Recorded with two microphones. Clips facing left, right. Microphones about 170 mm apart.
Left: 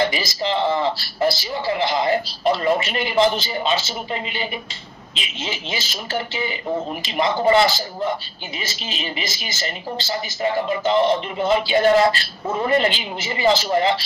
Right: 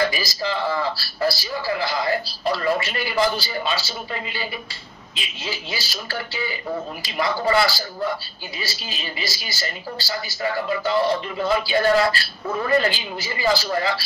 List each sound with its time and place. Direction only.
0.0 s speech: 20° left (ahead or behind)